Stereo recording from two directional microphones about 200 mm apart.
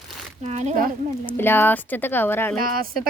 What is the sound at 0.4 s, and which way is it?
Speech, 35° right (ahead or behind).